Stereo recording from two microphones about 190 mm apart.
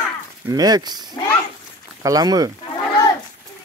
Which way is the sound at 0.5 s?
20° right (ahead or behind).